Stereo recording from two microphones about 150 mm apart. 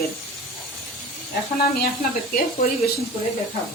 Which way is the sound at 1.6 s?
85° left.